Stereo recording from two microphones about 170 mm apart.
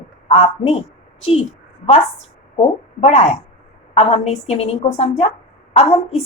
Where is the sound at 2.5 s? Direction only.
40° left (ahead or behind).